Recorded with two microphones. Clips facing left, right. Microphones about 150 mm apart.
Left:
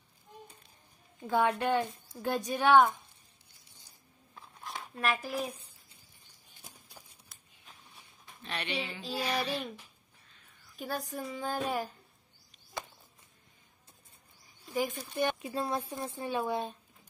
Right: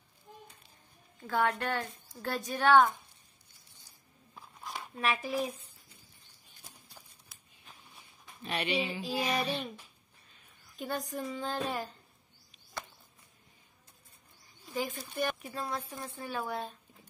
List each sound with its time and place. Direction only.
1.2 s a woman's voice: 20° left (ahead or behind)
4.4 s a sound: 5° right (ahead or behind)
7.9 s speech: 10° right (ahead or behind)
10.8 s a woman's voice: 5° left (ahead or behind)
14.7 s speech: 10° left (ahead or behind)
15.1 s speech: 25° left (ahead or behind)